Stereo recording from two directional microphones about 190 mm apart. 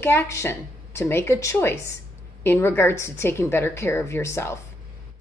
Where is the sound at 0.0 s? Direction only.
10° left (ahead or behind).